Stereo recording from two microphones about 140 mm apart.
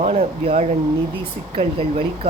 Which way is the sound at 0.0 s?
45° right (ahead or behind).